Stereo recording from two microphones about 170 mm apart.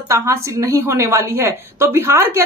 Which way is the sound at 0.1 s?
15° right (ahead or behind).